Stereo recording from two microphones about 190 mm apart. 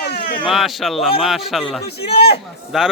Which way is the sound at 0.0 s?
55° left (ahead or behind).